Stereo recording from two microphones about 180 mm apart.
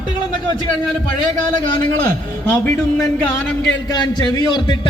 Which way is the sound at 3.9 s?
25° left (ahead or behind).